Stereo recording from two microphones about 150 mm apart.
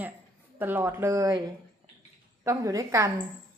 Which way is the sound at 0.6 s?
15° right (ahead or behind).